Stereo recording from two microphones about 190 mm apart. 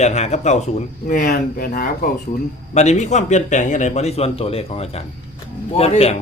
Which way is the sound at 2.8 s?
35° left (ahead or behind).